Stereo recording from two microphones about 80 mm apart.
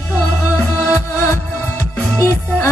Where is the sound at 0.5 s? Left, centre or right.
Left.